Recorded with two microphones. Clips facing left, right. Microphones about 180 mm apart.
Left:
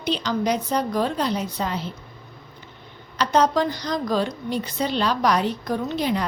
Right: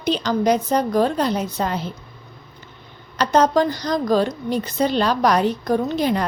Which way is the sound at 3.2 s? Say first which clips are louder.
Right 3 dB; 45° right (ahead or behind).